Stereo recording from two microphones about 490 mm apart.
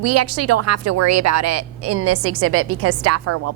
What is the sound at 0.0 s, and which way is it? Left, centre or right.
A woman's voice, right.